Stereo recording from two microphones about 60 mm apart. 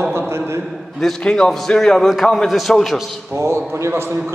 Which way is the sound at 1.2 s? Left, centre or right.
Centre.